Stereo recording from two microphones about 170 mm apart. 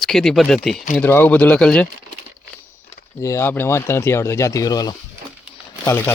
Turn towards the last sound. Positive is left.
turn(degrees=15)  # may be behind; listen again after turning